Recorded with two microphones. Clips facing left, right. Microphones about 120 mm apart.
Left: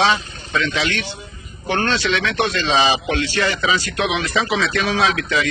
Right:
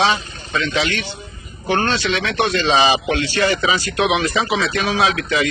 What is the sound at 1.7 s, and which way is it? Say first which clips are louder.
Speech: right 1 dB; 10° right (ahead or behind).